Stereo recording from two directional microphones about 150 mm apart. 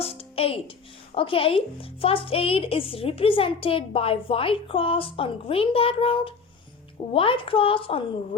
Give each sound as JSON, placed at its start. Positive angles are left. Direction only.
{"t": 0.0, "sound": "music", "side_deg": 40}
{"t": 1.1, "sound": "speech", "side_deg": 35}